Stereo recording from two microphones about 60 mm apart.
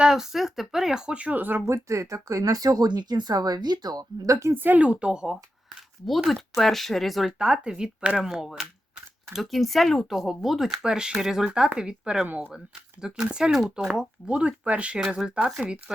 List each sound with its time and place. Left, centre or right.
0.0 s speech: centre; by 1.6 s right
1.6 s speech: right
4.5 s speech: right; by 5.4 s centre
6.1 s speech: centre
7.3 s speech: centre